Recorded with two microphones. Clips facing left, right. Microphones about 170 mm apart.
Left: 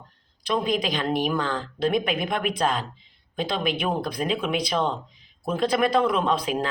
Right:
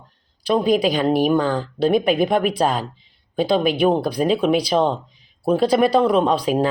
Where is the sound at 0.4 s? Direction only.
35° right (ahead or behind).